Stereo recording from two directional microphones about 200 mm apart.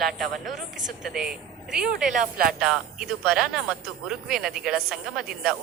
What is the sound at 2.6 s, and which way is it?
Speech, centre (ahead or behind).